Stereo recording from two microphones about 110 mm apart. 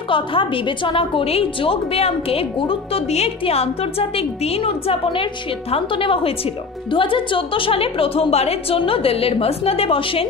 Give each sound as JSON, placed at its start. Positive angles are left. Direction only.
{"t": 0.1, "sound": "a woman's voice", "side_deg": 50}